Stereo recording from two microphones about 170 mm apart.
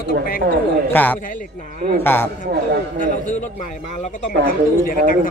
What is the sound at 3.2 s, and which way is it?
A man's voice, 50° left (ahead or behind).